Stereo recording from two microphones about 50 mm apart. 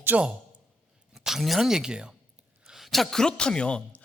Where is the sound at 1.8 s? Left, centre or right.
Centre.